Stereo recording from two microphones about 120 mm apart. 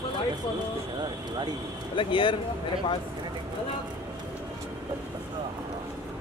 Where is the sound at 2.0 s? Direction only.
45° left (ahead or behind).